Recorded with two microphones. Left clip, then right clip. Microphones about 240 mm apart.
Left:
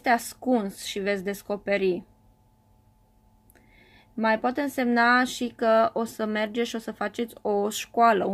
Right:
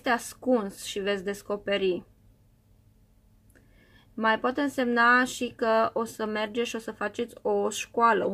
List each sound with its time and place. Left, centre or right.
0.0 s speech: left
3.9 s speech: left